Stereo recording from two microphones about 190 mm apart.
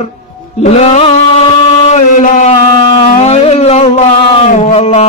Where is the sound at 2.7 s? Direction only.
25° left (ahead or behind).